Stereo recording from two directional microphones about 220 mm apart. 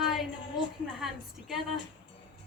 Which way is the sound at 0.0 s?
Centre (ahead or behind).